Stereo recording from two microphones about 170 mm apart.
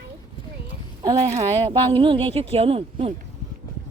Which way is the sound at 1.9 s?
35° right (ahead or behind).